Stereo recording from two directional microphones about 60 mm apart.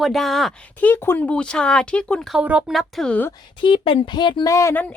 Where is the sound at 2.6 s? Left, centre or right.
Centre.